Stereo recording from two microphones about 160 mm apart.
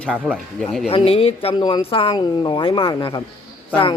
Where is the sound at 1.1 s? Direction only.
35° left (ahead or behind).